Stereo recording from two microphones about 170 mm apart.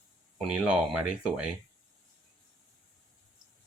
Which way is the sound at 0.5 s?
5° right (ahead or behind).